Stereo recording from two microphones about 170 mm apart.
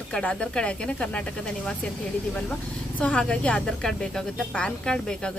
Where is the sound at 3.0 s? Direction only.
5° left (ahead or behind).